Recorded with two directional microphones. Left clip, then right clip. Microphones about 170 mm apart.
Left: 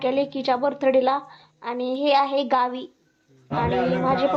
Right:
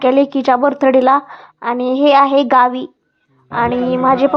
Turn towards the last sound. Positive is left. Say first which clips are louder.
# right 8 dB
turn(degrees=-30)  # may be behind; listen again after turning